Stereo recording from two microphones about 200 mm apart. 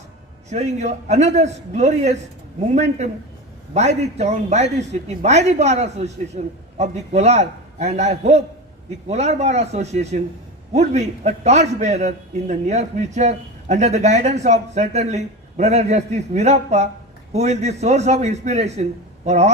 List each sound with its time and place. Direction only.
0.5 s a man's voice: 35° right (ahead or behind)